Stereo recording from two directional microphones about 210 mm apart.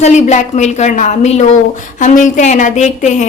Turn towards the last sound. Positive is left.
turn(degrees=35)  # may be behind; listen again after turning